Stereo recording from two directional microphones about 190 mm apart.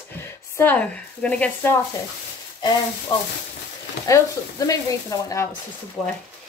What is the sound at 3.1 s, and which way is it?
A woman's voice, 20° left (ahead or behind).